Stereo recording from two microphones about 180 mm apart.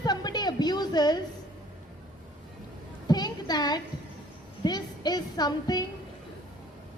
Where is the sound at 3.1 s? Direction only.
20° left (ahead or behind).